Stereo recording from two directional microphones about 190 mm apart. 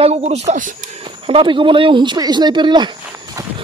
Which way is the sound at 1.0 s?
25° right (ahead or behind).